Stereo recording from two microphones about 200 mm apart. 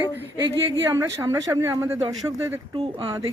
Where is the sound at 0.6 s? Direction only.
10° right (ahead or behind).